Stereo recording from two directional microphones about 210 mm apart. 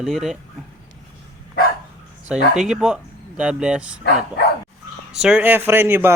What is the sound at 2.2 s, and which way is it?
Speech, 5° right (ahead or behind).